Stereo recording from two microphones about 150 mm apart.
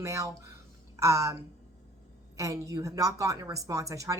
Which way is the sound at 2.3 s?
20° right (ahead or behind).